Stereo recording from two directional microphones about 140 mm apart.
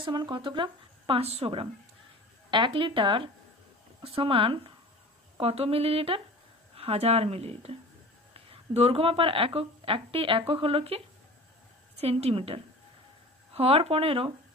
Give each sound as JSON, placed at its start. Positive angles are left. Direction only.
{"t": 0.0, "sound": "a woman's voice", "side_deg": -30}
{"t": 12.0, "sound": "speech", "side_deg": -45}